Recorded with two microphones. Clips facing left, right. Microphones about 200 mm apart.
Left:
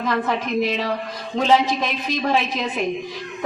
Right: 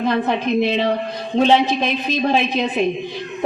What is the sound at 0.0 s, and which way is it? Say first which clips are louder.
A man's voice: right 4 dB; 30° right (ahead or behind).